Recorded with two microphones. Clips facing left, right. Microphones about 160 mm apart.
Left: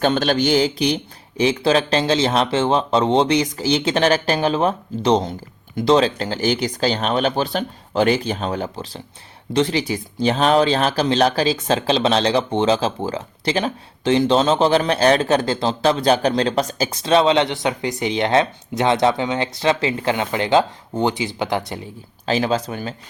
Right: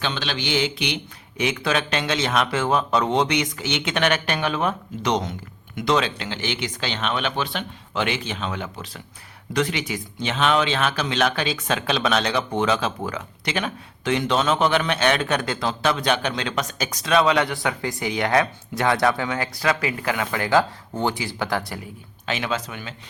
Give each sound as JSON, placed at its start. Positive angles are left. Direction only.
{"t": 0.0, "sound": "speech", "side_deg": 45}
{"t": 22.3, "sound": "speech", "side_deg": 35}